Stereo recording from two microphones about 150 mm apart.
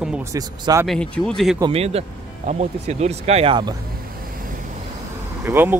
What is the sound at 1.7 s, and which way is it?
Speech, 40° right (ahead or behind).